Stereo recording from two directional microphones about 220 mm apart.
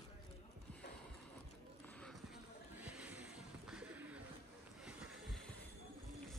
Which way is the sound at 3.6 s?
5° right (ahead or behind).